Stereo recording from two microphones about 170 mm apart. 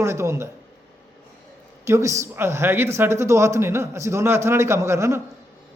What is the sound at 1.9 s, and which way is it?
Speech, 15° right (ahead or behind).